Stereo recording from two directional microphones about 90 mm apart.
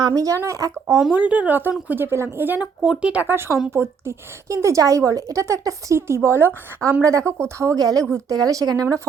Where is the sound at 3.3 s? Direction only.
25° right (ahead or behind).